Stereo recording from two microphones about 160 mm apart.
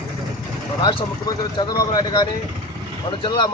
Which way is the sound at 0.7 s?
25° left (ahead or behind).